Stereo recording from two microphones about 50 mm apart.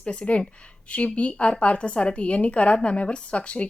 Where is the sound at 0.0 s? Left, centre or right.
Left.